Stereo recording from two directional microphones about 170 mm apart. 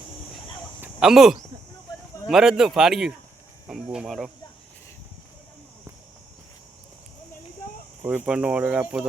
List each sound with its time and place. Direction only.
0.8 s a sound: 5° right (ahead or behind)
2.3 s speech: 5° right (ahead or behind)
8.0 s speech: 10° right (ahead or behind)